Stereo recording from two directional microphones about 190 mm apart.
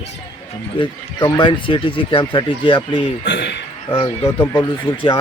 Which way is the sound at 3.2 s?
65° left (ahead or behind).